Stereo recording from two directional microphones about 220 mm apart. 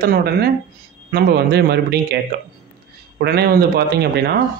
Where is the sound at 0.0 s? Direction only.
45° right (ahead or behind).